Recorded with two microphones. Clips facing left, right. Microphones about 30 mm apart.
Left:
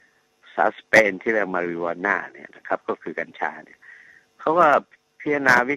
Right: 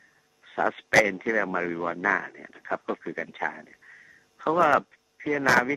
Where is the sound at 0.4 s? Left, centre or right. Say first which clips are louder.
Left 6 dB; centre.